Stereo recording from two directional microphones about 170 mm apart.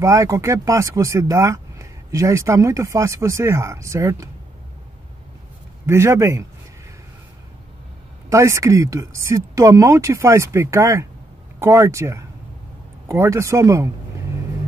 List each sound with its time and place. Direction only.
0.0 s speech: 20° right (ahead or behind)
5.9 s speech: 15° right (ahead or behind)
8.3 s speech: 15° right (ahead or behind)